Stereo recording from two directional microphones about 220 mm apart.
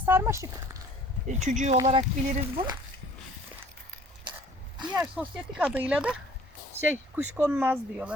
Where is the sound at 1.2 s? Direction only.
30° right (ahead or behind).